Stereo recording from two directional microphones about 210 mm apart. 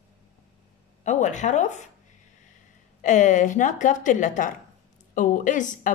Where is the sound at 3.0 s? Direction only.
35° left (ahead or behind).